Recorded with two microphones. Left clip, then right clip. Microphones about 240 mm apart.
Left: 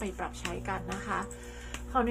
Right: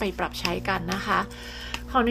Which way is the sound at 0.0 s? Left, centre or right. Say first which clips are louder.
Right 9 dB; right.